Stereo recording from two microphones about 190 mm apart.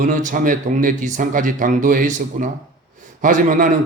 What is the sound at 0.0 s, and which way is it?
A man's voice, 45° right (ahead or behind).